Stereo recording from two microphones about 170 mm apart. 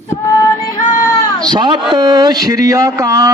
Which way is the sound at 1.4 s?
25° right (ahead or behind).